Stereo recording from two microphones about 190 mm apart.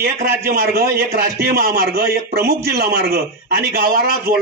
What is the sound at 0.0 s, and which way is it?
A man's voice, 55° right (ahead or behind).